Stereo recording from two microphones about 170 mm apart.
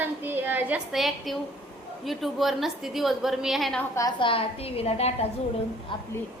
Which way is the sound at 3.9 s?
25° left (ahead or behind).